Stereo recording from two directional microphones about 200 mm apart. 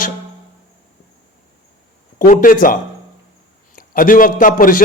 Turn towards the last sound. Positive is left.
turn(degrees=45)  # may be behind; listen again after turning